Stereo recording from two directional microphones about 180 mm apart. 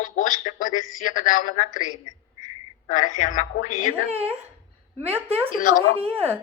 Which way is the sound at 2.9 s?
45° left (ahead or behind).